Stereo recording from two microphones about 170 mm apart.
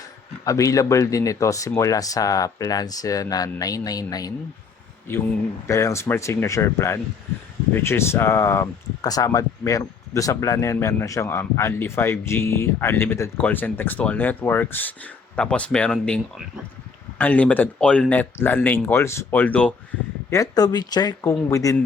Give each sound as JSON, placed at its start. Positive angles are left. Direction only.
{"t": 0.4, "sound": "speech", "side_deg": 20}
{"t": 5.6, "sound": "speech", "side_deg": 15}
{"t": 20.3, "sound": "speech", "side_deg": 20}